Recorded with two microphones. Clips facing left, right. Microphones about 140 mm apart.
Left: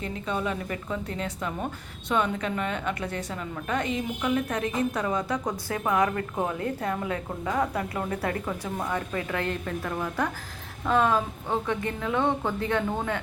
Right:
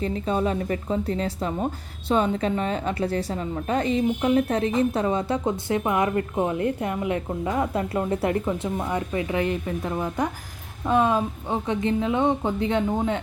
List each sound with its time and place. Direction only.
0.0 s a woman's voice: 35° right (ahead or behind)